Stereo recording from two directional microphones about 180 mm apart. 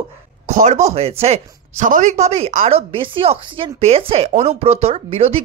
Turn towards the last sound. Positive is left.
turn(degrees=-35)  # may be behind; listen again after turning